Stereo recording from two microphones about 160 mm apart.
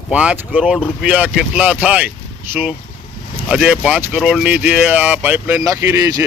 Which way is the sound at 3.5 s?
5° right (ahead or behind).